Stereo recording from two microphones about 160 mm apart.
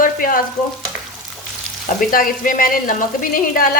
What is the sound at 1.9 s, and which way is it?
Speech, 60° left (ahead or behind).